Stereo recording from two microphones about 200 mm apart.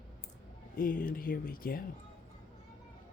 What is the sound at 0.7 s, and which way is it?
Speech, 45° left (ahead or behind).